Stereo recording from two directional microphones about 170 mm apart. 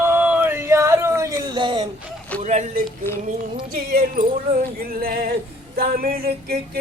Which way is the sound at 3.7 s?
55° right (ahead or behind).